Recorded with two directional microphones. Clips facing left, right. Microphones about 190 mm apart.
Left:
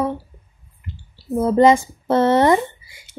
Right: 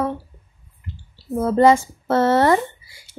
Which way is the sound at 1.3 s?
15° left (ahead or behind).